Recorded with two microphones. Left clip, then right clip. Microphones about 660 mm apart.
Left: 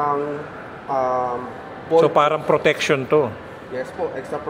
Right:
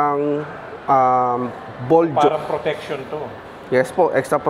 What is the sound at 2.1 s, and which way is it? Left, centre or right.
Speech, left.